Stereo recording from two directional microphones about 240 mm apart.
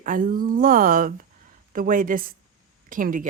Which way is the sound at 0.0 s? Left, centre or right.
Right.